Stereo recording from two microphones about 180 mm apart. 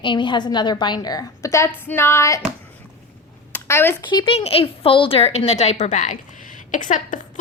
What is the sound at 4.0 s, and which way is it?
A woman's voice, 25° left (ahead or behind).